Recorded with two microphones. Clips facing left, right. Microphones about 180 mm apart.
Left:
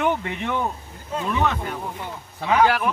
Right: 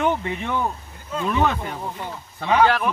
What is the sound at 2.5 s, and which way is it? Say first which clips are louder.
Speech: right 1 dB; 5° left (ahead or behind).